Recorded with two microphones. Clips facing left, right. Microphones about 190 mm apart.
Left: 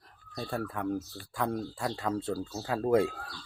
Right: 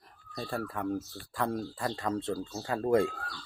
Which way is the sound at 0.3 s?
Centre (ahead or behind).